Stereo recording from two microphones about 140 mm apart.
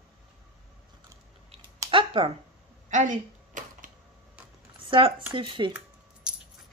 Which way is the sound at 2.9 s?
65° right (ahead or behind).